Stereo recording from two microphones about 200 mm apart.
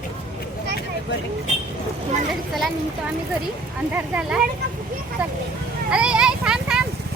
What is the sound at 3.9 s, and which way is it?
Speech, 10° right (ahead or behind).